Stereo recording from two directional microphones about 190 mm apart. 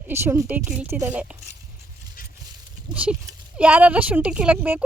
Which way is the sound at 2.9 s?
5° right (ahead or behind).